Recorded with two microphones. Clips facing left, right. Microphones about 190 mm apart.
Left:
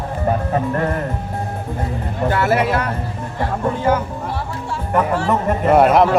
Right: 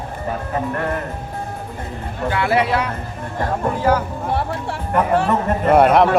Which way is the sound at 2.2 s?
45° left (ahead or behind).